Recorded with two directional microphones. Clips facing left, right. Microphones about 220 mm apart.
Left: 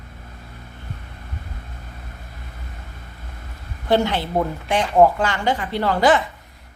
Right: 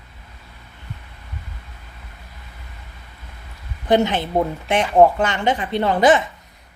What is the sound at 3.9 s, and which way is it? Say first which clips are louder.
A woman's voice: right 2 dB; 20° right (ahead or behind).